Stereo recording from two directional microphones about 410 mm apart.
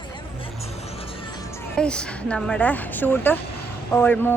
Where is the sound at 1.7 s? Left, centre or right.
Centre.